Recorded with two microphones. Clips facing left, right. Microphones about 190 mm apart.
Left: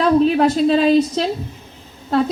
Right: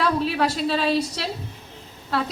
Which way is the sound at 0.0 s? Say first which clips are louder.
Left 8 dB; 40° left (ahead or behind).